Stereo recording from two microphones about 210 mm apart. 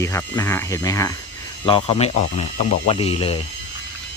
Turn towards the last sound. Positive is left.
turn(degrees=25)  # may be behind; listen again after turning